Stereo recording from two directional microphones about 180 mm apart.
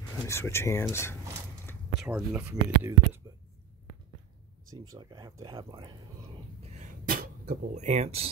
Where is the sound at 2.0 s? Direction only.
5° right (ahead or behind).